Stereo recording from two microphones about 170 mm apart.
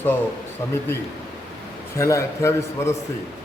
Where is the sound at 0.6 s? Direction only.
15° left (ahead or behind).